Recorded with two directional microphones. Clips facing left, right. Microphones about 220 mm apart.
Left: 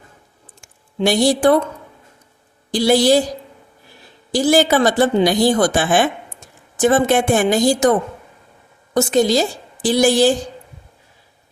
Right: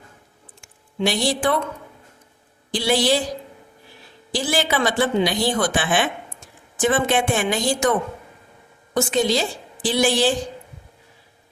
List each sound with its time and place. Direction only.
0.6 s speech: 40° left (ahead or behind)
2.7 s speech: 40° left (ahead or behind)
4.3 s speech: 40° left (ahead or behind)
9.0 s speech: 40° left (ahead or behind)